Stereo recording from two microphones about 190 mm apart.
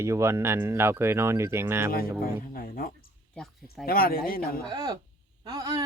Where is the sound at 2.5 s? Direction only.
50° left (ahead or behind).